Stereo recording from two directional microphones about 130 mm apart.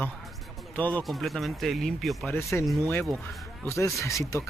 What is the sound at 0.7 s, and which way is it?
Speech, 10° left (ahead or behind).